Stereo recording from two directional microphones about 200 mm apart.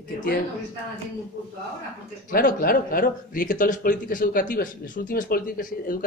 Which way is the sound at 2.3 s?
45° left (ahead or behind).